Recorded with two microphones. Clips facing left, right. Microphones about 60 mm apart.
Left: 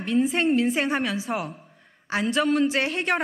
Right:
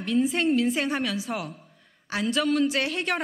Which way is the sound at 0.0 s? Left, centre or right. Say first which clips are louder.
Left 1 dB; left.